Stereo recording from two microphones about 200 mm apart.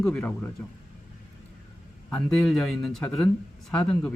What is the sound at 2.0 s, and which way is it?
A man's voice, 5° left (ahead or behind).